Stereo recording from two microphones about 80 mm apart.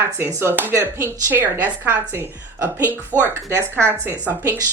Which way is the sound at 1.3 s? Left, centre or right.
Right.